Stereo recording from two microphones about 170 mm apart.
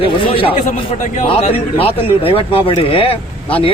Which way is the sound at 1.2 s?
35° left (ahead or behind).